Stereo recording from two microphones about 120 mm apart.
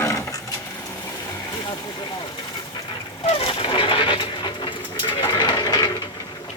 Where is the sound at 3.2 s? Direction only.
55° left (ahead or behind).